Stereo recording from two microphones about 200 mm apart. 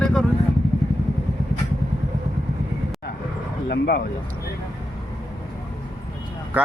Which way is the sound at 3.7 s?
50° left (ahead or behind).